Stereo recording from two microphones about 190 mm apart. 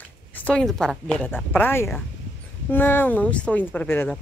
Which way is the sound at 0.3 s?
10° left (ahead or behind).